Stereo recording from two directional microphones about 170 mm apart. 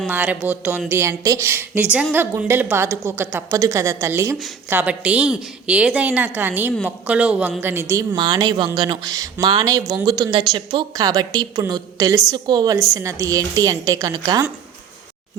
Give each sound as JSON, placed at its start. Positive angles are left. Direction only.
{"t": 0.1, "sound": "speech", "side_deg": -10}
{"t": 8.1, "sound": "speech", "side_deg": -25}